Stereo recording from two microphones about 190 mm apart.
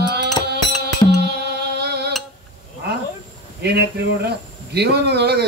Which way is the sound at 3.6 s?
60° right (ahead or behind).